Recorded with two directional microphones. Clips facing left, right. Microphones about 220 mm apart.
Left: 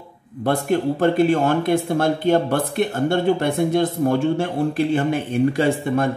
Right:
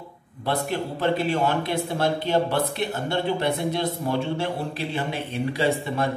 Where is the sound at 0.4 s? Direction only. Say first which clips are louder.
Left 6 dB; 50° left (ahead or behind).